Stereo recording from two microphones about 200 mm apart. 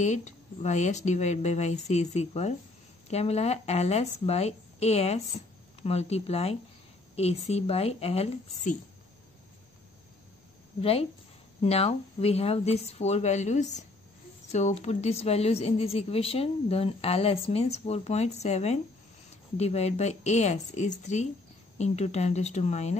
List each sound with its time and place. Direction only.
0.0 s a woman's voice: 35° left (ahead or behind)
10.8 s a woman's voice: 30° left (ahead or behind)